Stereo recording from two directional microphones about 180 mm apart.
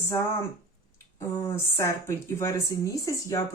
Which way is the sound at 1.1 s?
15° left (ahead or behind).